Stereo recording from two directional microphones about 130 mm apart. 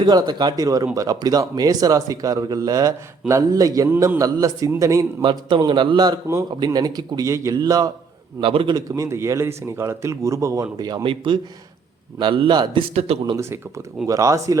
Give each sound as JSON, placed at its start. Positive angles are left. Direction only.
{"t": 0.0, "sound": "speech", "side_deg": -35}
{"t": 5.2, "sound": "a man's voice", "side_deg": -35}
{"t": 12.9, "sound": "speech", "side_deg": -50}
{"t": 13.3, "sound": "speech", "side_deg": -20}